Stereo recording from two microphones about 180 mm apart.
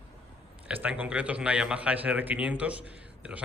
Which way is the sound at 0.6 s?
10° right (ahead or behind).